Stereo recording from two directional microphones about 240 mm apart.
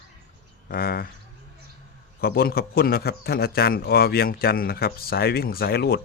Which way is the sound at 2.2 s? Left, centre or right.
Left.